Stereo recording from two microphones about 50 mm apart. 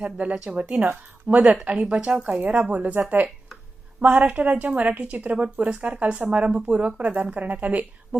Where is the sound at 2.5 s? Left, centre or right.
Right.